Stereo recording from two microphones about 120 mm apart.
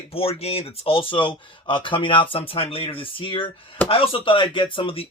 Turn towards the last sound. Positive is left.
turn(degrees=50)  # may be behind; listen again after turning